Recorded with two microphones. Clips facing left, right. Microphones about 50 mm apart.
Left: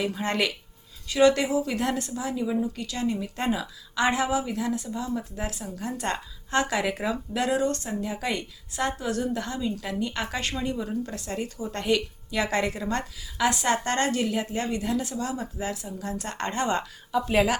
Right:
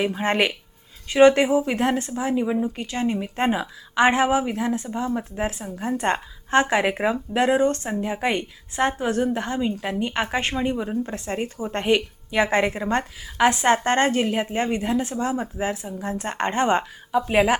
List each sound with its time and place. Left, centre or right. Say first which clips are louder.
0.0 s a woman's voice: right 5 dB; right